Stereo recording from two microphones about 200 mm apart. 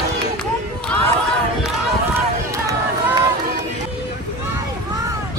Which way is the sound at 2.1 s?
15° right (ahead or behind).